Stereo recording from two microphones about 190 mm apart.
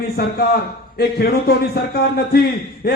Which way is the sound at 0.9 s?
55° left (ahead or behind).